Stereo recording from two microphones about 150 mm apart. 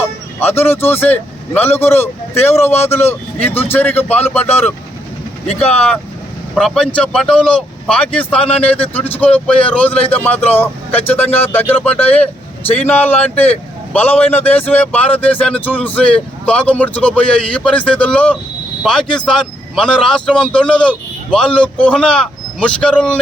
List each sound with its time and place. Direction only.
0.5 s a man's voice: 15° left (ahead or behind)
6.5 s a man's voice: centre (ahead or behind)